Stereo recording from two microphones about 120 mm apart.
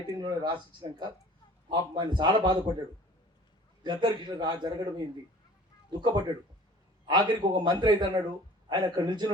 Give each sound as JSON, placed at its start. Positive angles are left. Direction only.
{"t": 0.2, "sound": "a man's voice", "side_deg": -40}
{"t": 3.8, "sound": "a man's voice", "side_deg": -40}